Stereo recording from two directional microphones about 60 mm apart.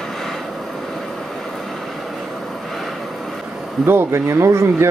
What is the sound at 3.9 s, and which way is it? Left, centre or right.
Speech, right.